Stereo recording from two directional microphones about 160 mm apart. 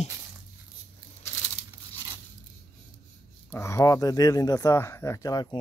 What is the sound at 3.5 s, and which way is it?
Speech, 20° left (ahead or behind).